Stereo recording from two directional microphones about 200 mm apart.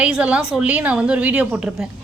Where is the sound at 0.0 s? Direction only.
5° right (ahead or behind).